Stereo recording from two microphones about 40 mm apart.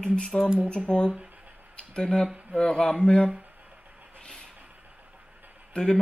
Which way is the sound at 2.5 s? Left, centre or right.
Centre.